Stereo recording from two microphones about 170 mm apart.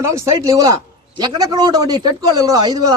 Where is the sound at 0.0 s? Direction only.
15° right (ahead or behind).